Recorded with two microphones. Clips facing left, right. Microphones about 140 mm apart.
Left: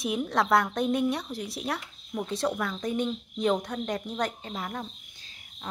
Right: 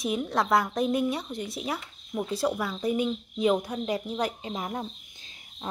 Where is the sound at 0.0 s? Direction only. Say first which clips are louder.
Even; centre (ahead or behind).